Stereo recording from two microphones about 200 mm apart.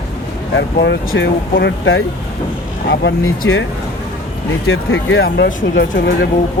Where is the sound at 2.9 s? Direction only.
55° left (ahead or behind); by 3.6 s 75° left (ahead or behind).